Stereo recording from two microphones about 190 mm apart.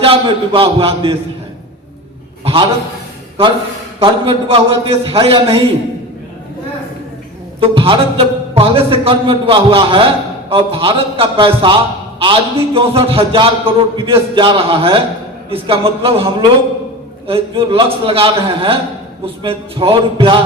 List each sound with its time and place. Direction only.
0.0 s a man's voice: 30° right (ahead or behind)
2.4 s a sound: 30° right (ahead or behind)
4.0 s a man's voice: 30° right (ahead or behind)
7.6 s a man's voice: 30° right (ahead or behind)